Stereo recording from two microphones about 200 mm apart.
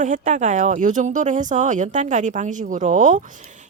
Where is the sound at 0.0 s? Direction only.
40° right (ahead or behind).